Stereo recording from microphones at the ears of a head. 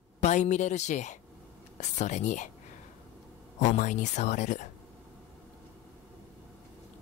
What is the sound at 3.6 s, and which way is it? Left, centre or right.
Speech, left.